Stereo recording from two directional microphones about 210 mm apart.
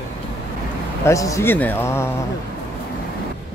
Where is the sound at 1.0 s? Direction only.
15° left (ahead or behind).